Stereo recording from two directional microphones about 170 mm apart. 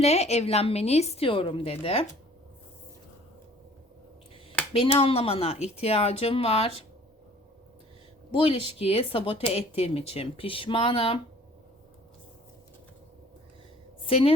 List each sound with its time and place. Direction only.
0.0 s a woman's voice: 40° left (ahead or behind)
4.7 s a woman's voice: 35° left (ahead or behind)
8.3 s a woman's voice: 30° left (ahead or behind)
14.0 s a woman's voice: 35° left (ahead or behind)